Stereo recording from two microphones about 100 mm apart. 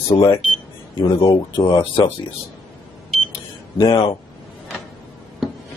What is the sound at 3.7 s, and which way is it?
Speech, 60° left (ahead or behind).